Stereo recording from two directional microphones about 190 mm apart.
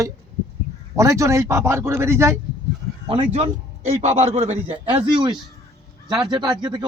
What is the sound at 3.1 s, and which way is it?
A man's voice, 30° right (ahead or behind).